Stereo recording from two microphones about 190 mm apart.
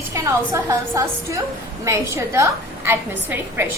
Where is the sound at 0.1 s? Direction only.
15° right (ahead or behind).